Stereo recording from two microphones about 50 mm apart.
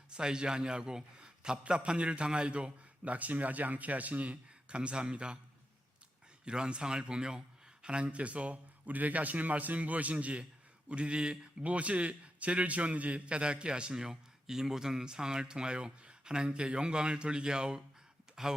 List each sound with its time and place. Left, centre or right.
0.1 s a man's voice: centre
6.4 s a man's voice: centre